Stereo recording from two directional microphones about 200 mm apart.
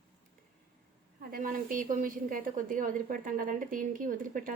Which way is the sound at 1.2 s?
45° right (ahead or behind).